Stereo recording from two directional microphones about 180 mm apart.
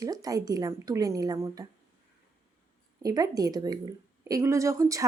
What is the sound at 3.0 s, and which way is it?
A woman's voice, 20° right (ahead or behind).